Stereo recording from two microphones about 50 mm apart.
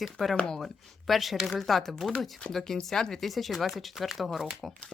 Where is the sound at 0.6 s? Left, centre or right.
Centre.